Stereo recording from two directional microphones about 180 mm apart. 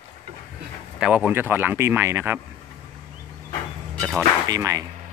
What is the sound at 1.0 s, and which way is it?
Speech, 5° right (ahead or behind).